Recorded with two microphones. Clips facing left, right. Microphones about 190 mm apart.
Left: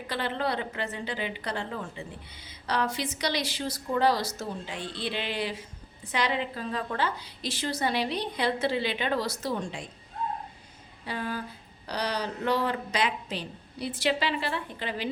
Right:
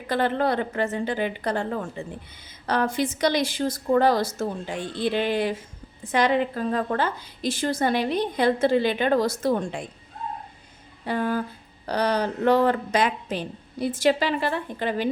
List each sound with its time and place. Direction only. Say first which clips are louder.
0.1 s a woman's voice: right 7 dB; 50° right (ahead or behind)
11.0 s a woman's voice: right 8 dB; 50° right (ahead or behind)